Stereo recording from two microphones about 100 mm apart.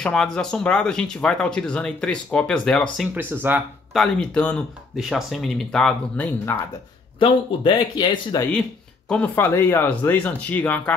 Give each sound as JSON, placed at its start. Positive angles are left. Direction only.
{"t": 0.0, "sound": "speech", "side_deg": 10}
{"t": 3.2, "sound": "speech", "side_deg": -20}
{"t": 3.9, "sound": "speech", "side_deg": 5}
{"t": 4.9, "sound": "speech", "side_deg": -5}
{"t": 7.2, "sound": "speech", "side_deg": 50}
{"t": 9.1, "sound": "speech", "side_deg": 20}